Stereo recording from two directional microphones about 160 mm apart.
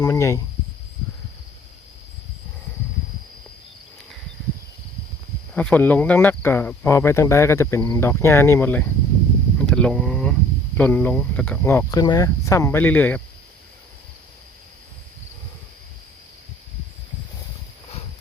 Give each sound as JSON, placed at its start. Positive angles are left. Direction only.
{"t": 0.0, "sound": "speech", "side_deg": 20}
{"t": 5.5, "sound": "speech", "side_deg": 10}
{"t": 9.6, "sound": "a sound", "side_deg": 5}
{"t": 10.8, "sound": "speech", "side_deg": 10}